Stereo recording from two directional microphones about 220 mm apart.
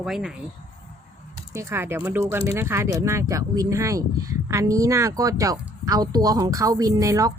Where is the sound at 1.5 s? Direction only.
10° right (ahead or behind).